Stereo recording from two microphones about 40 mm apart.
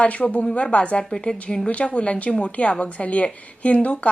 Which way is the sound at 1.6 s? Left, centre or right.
Left.